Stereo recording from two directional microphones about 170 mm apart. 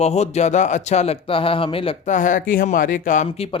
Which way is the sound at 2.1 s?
50° left (ahead or behind).